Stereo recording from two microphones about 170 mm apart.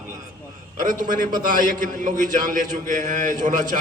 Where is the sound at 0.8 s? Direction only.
50° right (ahead or behind).